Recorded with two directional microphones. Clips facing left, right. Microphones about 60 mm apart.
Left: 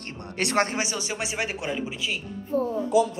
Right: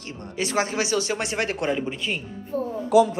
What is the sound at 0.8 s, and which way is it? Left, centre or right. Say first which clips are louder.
Speech: right 5 dB; left.